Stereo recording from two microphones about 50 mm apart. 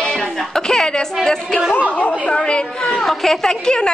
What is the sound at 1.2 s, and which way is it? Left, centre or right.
Speech, centre.